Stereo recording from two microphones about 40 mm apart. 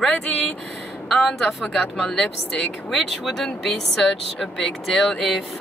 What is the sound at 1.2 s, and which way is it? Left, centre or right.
Speech, centre.